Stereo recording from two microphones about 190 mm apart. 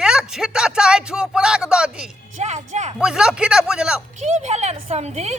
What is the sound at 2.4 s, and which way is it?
Speech, 40° right (ahead or behind).